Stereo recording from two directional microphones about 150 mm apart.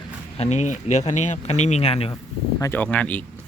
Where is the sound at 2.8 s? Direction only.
10° left (ahead or behind).